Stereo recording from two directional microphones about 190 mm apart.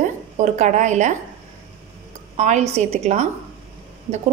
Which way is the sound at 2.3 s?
35° right (ahead or behind).